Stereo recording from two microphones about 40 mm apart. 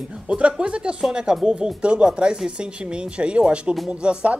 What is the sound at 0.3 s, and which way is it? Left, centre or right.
Speech, right.